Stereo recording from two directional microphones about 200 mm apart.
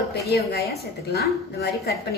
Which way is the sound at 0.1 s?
55° left (ahead or behind).